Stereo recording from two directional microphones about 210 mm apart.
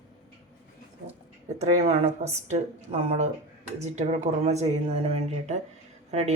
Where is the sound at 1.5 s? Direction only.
30° right (ahead or behind).